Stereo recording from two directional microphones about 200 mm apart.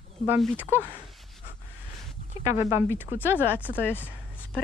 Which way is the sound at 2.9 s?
10° right (ahead or behind).